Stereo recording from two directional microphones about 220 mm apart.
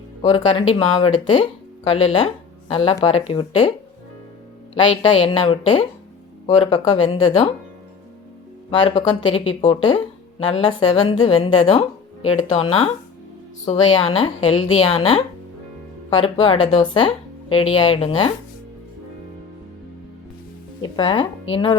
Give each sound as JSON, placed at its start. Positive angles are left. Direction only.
{"t": 0.2, "sound": "speech", "side_deg": 20}
{"t": 4.7, "sound": "speech", "side_deg": 25}
{"t": 8.7, "sound": "speech", "side_deg": 20}
{"t": 20.8, "sound": "speech", "side_deg": 20}